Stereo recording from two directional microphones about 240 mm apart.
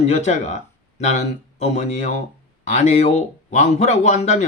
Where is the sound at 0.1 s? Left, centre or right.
Left.